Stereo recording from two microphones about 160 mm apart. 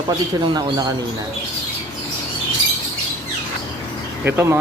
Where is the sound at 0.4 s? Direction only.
25° right (ahead or behind).